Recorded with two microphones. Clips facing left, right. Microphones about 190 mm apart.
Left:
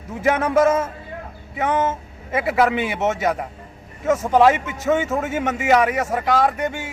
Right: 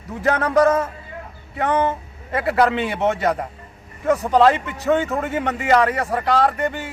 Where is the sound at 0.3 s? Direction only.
10° left (ahead or behind).